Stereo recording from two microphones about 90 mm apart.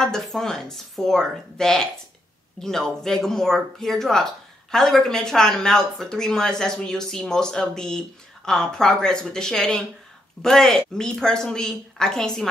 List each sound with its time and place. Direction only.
0.0 s a woman's voice: 5° left (ahead or behind)